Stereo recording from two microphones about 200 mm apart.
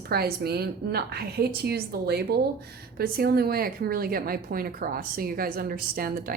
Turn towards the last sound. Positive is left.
turn(degrees=-45)  # may be behind; listen again after turning